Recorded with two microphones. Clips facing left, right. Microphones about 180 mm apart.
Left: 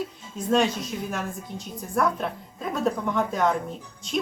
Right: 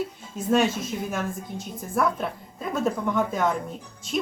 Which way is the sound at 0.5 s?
5° right (ahead or behind).